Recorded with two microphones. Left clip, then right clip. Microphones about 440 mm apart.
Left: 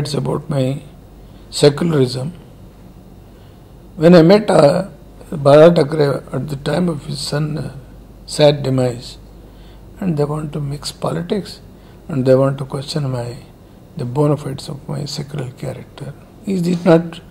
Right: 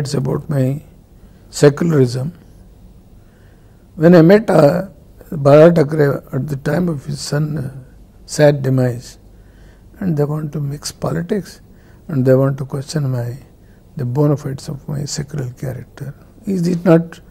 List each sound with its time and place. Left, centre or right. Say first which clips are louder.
0.0 s speech: even; right
4.0 s speech: even; right